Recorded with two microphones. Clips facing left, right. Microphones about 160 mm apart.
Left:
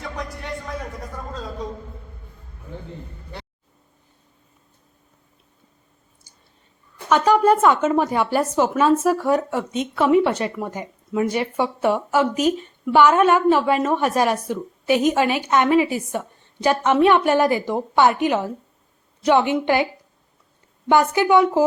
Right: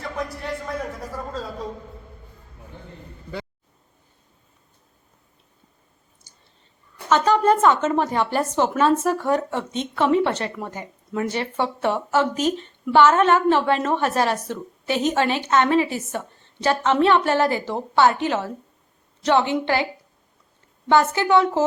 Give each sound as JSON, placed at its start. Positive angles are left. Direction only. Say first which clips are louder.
{"t": 0.0, "sound": "a sound", "louder": "right 2 dB", "side_deg": 0}
{"t": 6.3, "sound": "whispering", "louder": "even", "side_deg": 10}
{"t": 7.1, "sound": "speech", "louder": "left 2 dB", "side_deg": 10}
{"t": 20.9, "sound": "speech", "louder": "left 2 dB", "side_deg": 15}